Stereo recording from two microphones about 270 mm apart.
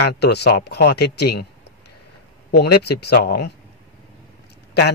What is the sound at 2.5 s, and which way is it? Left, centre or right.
A man's voice, left.